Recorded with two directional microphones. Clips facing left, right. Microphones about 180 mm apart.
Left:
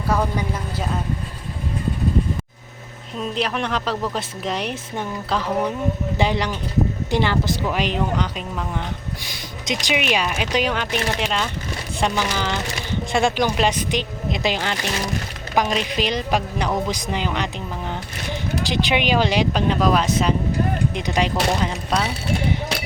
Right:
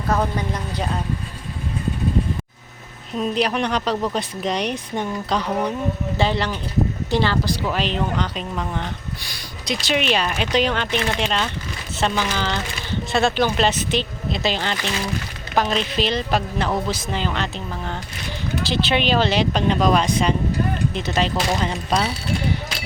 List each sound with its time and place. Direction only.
0.1 s a woman's voice: 10° left (ahead or behind)
3.2 s speech: centre (ahead or behind)
6.1 s a woman's voice: 15° left (ahead or behind)
9.3 s a sound: 20° left (ahead or behind)
9.9 s a woman's voice: 10° left (ahead or behind)